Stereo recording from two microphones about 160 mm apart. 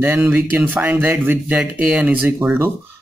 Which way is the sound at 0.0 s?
10° right (ahead or behind).